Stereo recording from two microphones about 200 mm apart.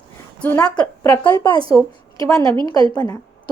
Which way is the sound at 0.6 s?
20° left (ahead or behind).